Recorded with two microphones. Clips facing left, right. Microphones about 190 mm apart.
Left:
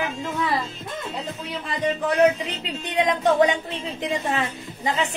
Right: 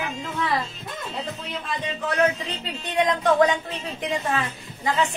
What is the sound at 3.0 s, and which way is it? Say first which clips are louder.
A woman's voice: left 1 dB; 20° left (ahead or behind).